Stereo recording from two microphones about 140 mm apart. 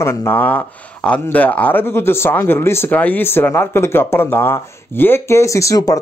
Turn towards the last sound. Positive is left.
turn(degrees=20)  # may be behind; listen again after turning